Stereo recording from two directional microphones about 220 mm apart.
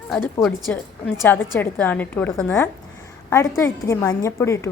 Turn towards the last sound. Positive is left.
turn(degrees=10)  # may be behind; listen again after turning